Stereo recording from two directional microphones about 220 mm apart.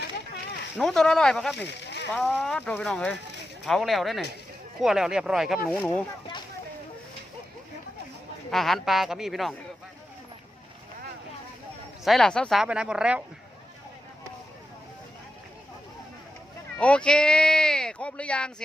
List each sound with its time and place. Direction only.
0.8 s speech: centre (ahead or behind)
1.6 s a sound: 50° left (ahead or behind)
2.1 s speech: centre (ahead or behind)
8.4 s speech: centre (ahead or behind)
12.0 s speech: centre (ahead or behind)
16.7 s speech: 5° left (ahead or behind)